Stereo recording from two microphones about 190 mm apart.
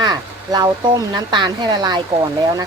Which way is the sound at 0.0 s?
20° right (ahead or behind).